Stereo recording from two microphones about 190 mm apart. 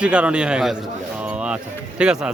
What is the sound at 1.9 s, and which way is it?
Speech, 5° right (ahead or behind).